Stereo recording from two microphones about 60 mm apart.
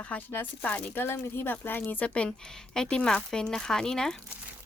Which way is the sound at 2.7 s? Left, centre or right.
Centre.